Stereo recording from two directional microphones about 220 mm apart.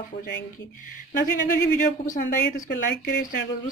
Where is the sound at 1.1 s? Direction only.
40° left (ahead or behind).